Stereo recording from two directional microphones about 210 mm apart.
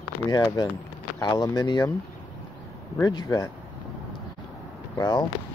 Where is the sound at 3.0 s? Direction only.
20° left (ahead or behind).